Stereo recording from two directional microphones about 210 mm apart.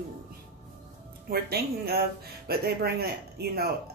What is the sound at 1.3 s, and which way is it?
Speech, 50° right (ahead or behind).